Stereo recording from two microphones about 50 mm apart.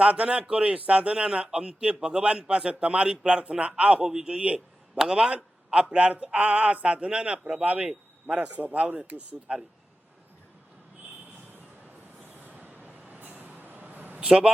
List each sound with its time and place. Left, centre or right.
0.0 s a man's voice: right
4.3 s a man's voice: right
4.9 s a man's voice: centre
12.3 s vehicle: right
14.2 s a man's voice: centre